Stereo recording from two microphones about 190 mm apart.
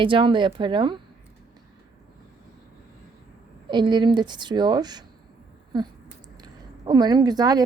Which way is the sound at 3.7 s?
25° right (ahead or behind).